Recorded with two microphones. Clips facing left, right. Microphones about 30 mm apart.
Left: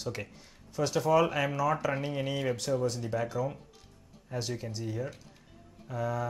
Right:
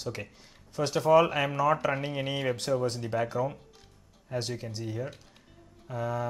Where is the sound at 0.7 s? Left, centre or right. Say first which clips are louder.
Right 3 dB; centre.